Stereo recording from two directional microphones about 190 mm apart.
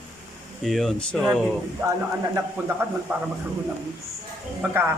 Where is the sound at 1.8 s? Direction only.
15° right (ahead or behind).